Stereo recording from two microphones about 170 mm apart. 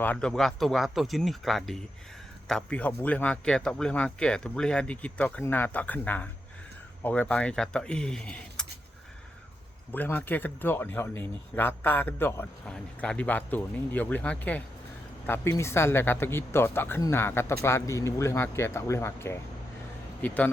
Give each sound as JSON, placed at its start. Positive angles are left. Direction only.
{"t": 0.0, "sound": "speech", "side_deg": 5}
{"t": 9.9, "sound": "speech", "side_deg": 10}